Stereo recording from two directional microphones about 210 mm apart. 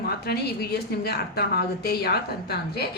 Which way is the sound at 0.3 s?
50° left (ahead or behind).